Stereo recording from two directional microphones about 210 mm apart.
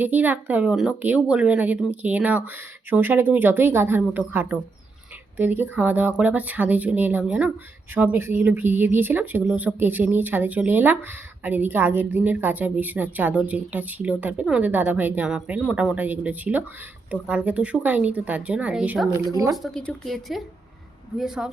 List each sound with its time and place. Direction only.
0.0 s a woman's voice: 10° right (ahead or behind)
19.3 s a woman's voice: 15° right (ahead or behind)
19.6 s speech: centre (ahead or behind)